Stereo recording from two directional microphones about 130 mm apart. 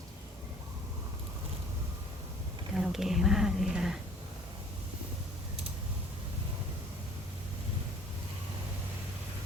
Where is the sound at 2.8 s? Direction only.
Centre (ahead or behind).